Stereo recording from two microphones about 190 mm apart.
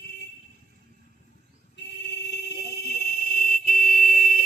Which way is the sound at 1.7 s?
60° left (ahead or behind).